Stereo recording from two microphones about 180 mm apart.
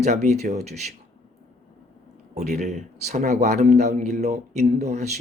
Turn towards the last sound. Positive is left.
turn(degrees=-40)  # may be behind; listen again after turning